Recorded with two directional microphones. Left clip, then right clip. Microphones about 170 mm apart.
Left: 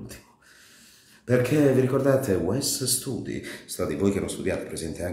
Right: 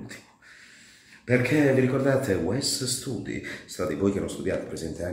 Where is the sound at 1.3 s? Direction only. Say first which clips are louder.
Left 1 dB; 25° left (ahead or behind).